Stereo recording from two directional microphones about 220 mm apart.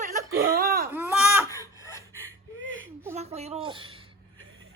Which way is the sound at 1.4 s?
15° left (ahead or behind).